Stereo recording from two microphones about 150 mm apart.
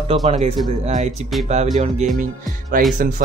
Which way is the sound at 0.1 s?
40° right (ahead or behind).